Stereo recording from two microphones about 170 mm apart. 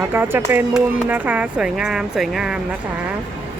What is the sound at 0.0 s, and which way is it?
Speech, 10° right (ahead or behind).